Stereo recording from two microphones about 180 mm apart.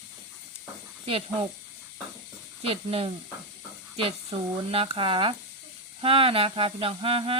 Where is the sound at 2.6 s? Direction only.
35° right (ahead or behind).